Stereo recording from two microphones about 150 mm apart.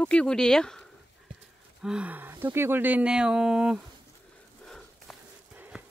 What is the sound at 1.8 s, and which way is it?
Speech, 10° right (ahead or behind).